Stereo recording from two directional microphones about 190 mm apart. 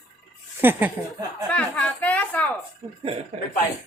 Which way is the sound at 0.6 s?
10° right (ahead or behind).